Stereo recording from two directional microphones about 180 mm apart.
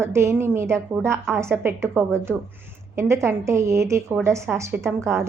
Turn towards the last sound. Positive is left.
turn(degrees=-15)  # may be behind; listen again after turning